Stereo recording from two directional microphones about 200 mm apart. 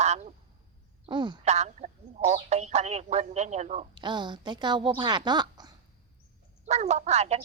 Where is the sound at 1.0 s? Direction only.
25° right (ahead or behind).